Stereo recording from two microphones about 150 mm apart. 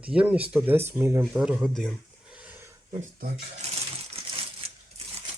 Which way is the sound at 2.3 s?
10° right (ahead or behind).